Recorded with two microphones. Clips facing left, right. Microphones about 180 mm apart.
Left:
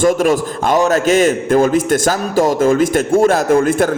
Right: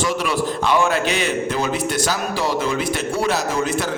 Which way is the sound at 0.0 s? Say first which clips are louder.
Left 8 dB; 50° left (ahead or behind).